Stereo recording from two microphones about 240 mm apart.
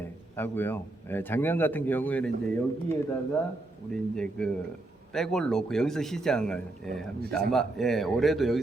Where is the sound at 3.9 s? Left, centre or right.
Centre.